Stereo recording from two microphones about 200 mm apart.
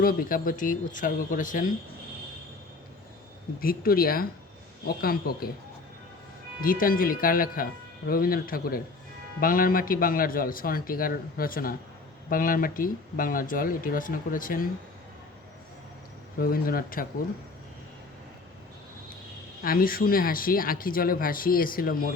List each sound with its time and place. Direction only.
0.0 s speech: 45° left (ahead or behind)
3.6 s speech: 45° left (ahead or behind)
6.6 s speech: 45° left (ahead or behind)
16.4 s speech: 45° left (ahead or behind)
19.6 s speech: 45° left (ahead or behind)